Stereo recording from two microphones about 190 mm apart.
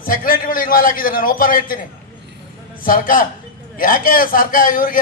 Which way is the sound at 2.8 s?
45° left (ahead or behind).